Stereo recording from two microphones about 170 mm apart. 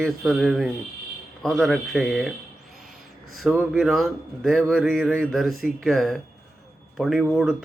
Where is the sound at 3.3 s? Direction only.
Centre (ahead or behind).